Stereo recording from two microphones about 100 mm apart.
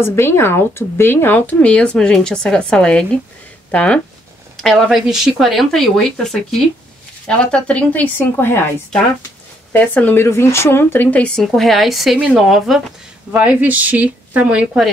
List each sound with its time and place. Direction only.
0.0 s speech: 25° left (ahead or behind)
9.7 s speech: 20° left (ahead or behind); by 12.8 s centre (ahead or behind)
13.3 s speech: 15° right (ahead or behind)